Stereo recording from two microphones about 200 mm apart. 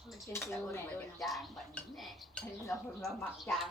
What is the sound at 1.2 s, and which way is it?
Speech, centre (ahead or behind).